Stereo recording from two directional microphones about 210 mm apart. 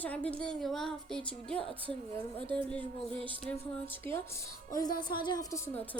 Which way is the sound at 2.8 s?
25° right (ahead or behind).